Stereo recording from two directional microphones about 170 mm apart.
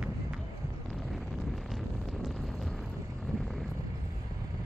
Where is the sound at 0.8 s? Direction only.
Centre (ahead or behind).